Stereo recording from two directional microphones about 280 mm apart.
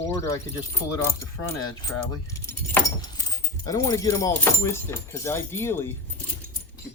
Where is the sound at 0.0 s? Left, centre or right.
Centre.